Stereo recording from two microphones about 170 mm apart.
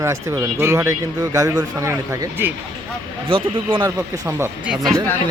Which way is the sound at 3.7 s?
20° right (ahead or behind).